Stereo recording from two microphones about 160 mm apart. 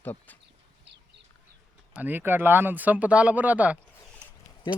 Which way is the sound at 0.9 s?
90° right.